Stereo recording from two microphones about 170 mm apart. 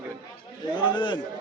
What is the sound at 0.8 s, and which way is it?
Speech, 30° left (ahead or behind).